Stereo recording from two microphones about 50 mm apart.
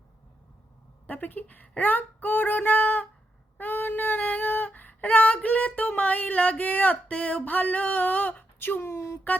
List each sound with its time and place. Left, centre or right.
1.0 s speech: left
3.6 s female singing: left
7.1 s speech: left
8.8 s speech: left